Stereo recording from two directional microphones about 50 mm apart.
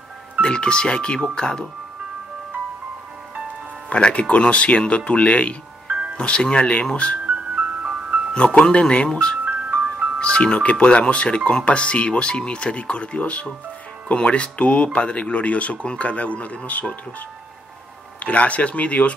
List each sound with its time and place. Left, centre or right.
0.4 s speech: centre
3.9 s speech: left
5.9 s music: right
6.1 s speech: left
7.2 s music: right
8.7 s speech: left
18.2 s speech: left